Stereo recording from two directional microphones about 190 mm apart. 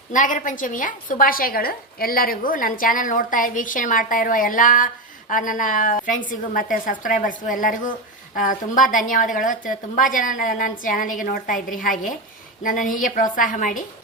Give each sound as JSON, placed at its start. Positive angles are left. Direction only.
{"t": 0.1, "sound": "a woman's voice", "side_deg": 45}